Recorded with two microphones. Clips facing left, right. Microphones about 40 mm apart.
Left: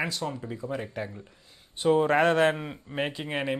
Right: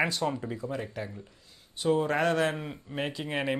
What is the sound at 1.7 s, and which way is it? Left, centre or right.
Speech, left.